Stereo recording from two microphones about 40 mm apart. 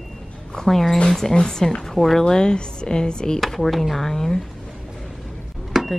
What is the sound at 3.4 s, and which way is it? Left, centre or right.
Speech, centre.